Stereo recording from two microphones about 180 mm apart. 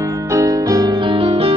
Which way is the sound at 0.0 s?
15° right (ahead or behind).